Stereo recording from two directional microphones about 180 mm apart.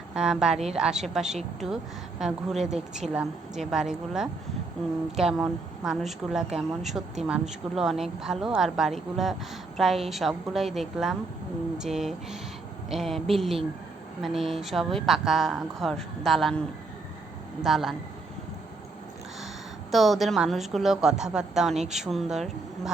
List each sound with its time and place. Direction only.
0.1 s a woman's voice: 5° right (ahead or behind)
0.5 s a woman's voice: 35° right (ahead or behind)
0.8 s a woman's voice: 5° right (ahead or behind)
19.9 s a woman's voice: centre (ahead or behind)